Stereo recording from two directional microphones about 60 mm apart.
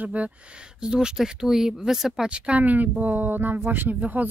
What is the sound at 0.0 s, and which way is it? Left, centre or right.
Speech, right.